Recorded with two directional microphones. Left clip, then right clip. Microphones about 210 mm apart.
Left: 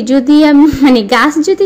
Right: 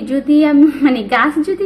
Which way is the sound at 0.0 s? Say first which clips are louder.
Left 5 dB; 40° left (ahead or behind).